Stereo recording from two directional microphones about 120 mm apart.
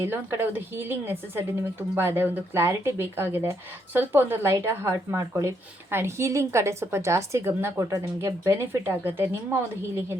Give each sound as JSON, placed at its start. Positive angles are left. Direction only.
{"t": 0.0, "sound": "a woman's voice", "side_deg": -20}